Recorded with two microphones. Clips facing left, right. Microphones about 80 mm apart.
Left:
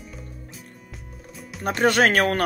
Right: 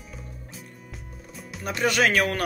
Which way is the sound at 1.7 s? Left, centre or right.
Left.